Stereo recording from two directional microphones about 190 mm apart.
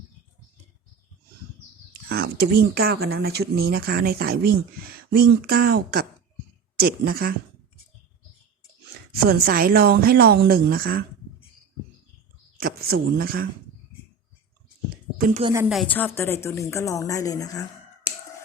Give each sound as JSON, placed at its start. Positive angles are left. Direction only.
{"t": 2.0, "sound": "speech", "side_deg": -55}
{"t": 9.1, "sound": "speech", "side_deg": -55}
{"t": 12.5, "sound": "a man's voice", "side_deg": -50}
{"t": 15.7, "sound": "a woman's voice", "side_deg": 5}